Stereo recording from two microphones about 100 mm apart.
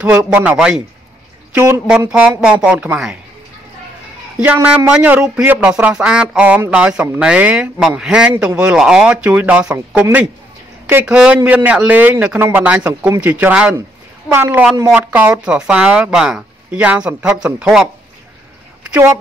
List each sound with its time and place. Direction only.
0.0 s speech: 15° right (ahead or behind)
1.9 s speech: 10° right (ahead or behind)
4.4 s speech: 15° right (ahead or behind)
11.1 s speech: 10° right (ahead or behind)